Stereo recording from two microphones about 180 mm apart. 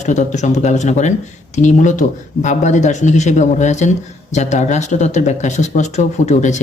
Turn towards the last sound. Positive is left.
turn(degrees=40)  # may be behind; listen again after turning